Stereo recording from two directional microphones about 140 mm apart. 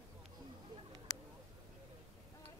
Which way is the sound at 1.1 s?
25° left (ahead or behind).